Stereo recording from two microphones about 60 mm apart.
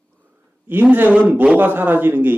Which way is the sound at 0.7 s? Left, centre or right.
Right.